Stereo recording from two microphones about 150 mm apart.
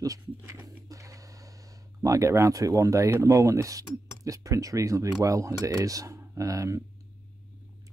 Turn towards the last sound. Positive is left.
turn(degrees=-20)  # may be behind; listen again after turning